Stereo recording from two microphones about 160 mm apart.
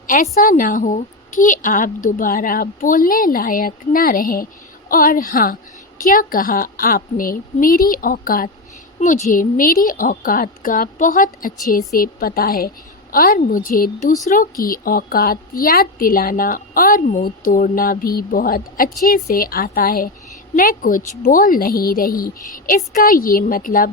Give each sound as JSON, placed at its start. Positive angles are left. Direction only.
{"t": 0.1, "sound": "a woman's voice", "side_deg": 55}
{"t": 9.0, "sound": "a woman's voice", "side_deg": 45}
{"t": 9.3, "sound": "a woman's voice", "side_deg": 60}